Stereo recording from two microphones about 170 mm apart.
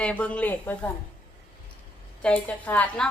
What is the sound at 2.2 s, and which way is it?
Speech, 10° left (ahead or behind).